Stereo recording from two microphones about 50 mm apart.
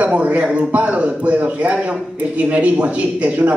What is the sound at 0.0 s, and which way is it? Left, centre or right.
A man's voice, right.